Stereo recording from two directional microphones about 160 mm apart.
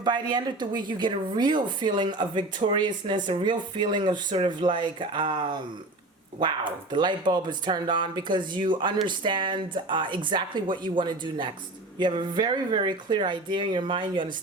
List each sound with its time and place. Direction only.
0.0 s a woman's voice: 25° right (ahead or behind)
6.9 s a woman's voice: 30° right (ahead or behind)